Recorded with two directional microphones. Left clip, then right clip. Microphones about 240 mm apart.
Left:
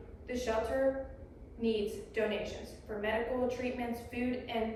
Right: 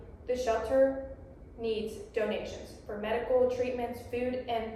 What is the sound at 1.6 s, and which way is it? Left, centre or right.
A woman's voice, centre.